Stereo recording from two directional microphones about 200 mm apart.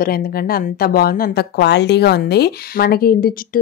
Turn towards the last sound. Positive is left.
turn(degrees=45)  # may be behind; listen again after turning